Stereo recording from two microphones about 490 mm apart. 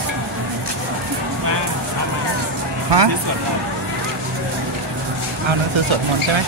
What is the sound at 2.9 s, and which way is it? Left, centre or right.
Speech, right.